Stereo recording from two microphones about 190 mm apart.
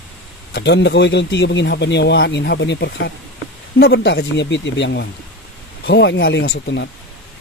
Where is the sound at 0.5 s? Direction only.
65° left (ahead or behind).